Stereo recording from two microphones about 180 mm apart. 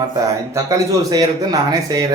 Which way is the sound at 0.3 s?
20° right (ahead or behind).